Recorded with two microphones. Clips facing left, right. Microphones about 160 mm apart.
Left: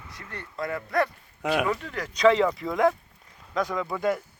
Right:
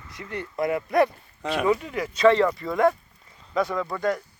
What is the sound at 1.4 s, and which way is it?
Speech, centre (ahead or behind).